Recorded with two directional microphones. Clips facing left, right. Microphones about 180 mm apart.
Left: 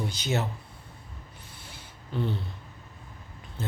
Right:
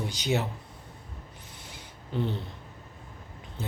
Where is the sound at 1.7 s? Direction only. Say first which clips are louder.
Right 1 dB; 20° right (ahead or behind).